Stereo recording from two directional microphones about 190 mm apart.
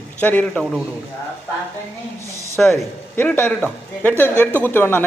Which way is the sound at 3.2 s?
10° left (ahead or behind).